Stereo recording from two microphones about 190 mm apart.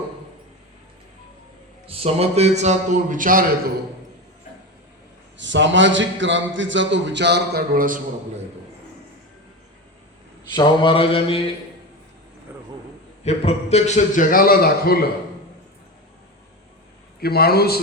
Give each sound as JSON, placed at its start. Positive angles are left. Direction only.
{"t": 1.9, "sound": "a man's voice", "side_deg": -30}
{"t": 5.4, "sound": "a man's voice", "side_deg": -70}
{"t": 10.5, "sound": "mantra", "side_deg": 25}
{"t": 13.2, "sound": "a man's voice", "side_deg": 35}
{"t": 17.2, "sound": "a man's voice", "side_deg": 55}